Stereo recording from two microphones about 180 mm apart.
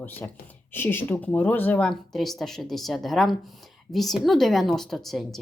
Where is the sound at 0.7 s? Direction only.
10° left (ahead or behind).